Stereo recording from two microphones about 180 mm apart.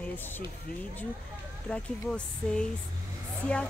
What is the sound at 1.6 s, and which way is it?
Speech, 5° left (ahead or behind).